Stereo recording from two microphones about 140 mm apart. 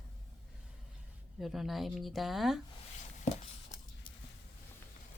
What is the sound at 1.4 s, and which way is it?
Speech, centre (ahead or behind).